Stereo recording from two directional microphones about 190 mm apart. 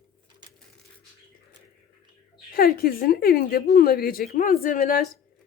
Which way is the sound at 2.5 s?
50° left (ahead or behind).